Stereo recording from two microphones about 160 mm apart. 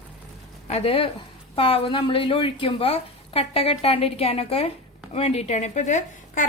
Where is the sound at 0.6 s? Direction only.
40° left (ahead or behind).